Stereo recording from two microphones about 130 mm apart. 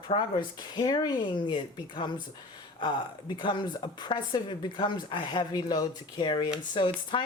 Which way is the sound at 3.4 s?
35° left (ahead or behind).